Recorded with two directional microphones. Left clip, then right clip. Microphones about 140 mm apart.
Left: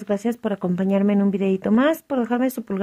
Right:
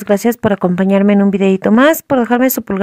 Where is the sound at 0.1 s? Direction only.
30° right (ahead or behind).